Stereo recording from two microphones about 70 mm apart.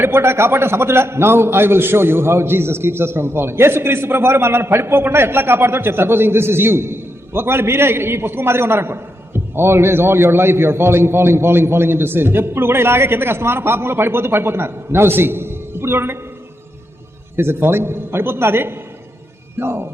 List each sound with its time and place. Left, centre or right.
0.0 s a man's voice: right
17.3 s a man's voice: right